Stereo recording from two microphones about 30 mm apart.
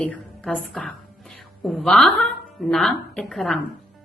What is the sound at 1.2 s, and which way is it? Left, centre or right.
Music, centre.